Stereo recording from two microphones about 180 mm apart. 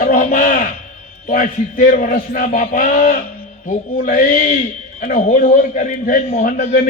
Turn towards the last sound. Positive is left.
turn(degrees=50)  # may be behind; listen again after turning